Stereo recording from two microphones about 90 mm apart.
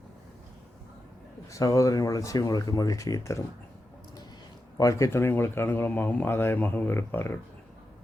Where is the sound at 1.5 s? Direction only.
35° left (ahead or behind).